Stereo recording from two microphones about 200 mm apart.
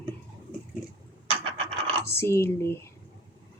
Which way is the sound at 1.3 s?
30° right (ahead or behind).